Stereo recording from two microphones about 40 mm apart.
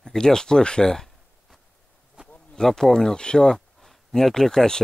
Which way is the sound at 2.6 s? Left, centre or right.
Centre.